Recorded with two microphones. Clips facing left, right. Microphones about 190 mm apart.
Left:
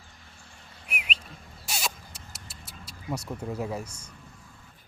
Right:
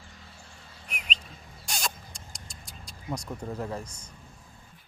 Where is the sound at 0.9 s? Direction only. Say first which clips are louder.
Left 2 dB; 10° left (ahead or behind).